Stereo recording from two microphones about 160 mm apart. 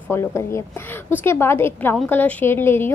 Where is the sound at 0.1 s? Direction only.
15° left (ahead or behind).